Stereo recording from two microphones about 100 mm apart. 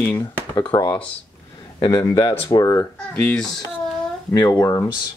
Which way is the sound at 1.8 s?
40° left (ahead or behind).